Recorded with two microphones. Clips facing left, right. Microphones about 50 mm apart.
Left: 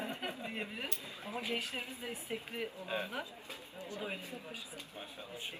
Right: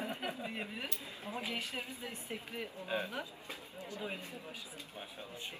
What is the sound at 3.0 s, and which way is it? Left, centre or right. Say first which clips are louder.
Speech: even; left.